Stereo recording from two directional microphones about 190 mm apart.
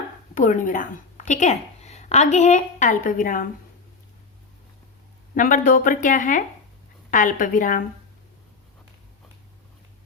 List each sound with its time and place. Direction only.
0.3 s a woman's voice: 45° left (ahead or behind)
5.3 s speech: 45° left (ahead or behind)